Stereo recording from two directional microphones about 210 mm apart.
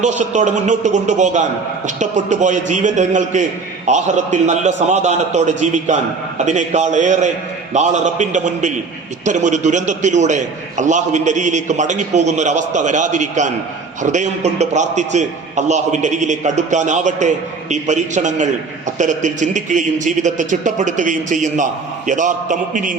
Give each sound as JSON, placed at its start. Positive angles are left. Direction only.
{"t": 0.0, "sound": "a man's voice", "side_deg": -35}